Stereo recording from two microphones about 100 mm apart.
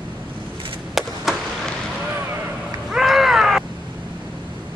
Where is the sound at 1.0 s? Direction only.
5° right (ahead or behind).